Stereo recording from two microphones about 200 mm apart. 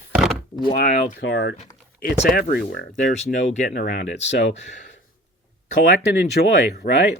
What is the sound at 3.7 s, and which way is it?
Speech, 50° left (ahead or behind).